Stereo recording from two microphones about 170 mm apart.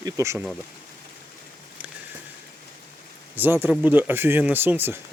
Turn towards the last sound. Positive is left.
turn(degrees=-10)  # may be behind; listen again after turning